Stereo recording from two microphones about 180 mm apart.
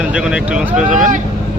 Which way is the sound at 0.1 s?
5° right (ahead or behind).